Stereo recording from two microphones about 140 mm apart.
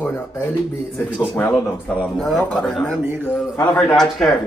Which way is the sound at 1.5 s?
5° left (ahead or behind).